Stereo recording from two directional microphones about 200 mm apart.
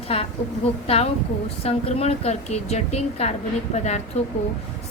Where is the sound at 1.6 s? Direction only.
30° left (ahead or behind).